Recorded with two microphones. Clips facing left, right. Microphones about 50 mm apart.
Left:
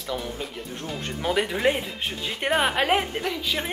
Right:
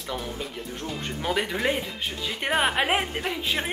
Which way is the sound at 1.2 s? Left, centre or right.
Centre.